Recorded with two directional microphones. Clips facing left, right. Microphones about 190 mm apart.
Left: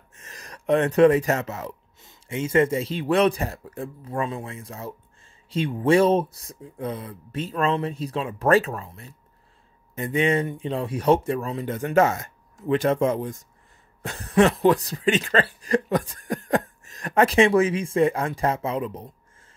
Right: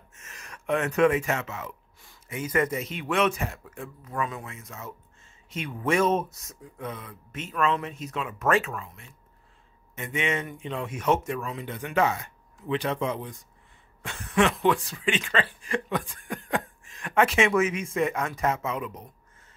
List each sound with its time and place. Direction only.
0.1 s speech: 35° left (ahead or behind)
2.0 s speech: 25° left (ahead or behind)